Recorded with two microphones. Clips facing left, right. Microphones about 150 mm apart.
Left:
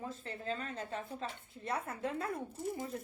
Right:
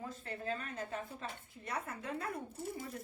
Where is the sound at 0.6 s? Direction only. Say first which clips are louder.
Left 1 dB; 30° left (ahead or behind).